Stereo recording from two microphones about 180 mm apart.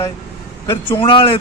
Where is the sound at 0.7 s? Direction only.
10° left (ahead or behind).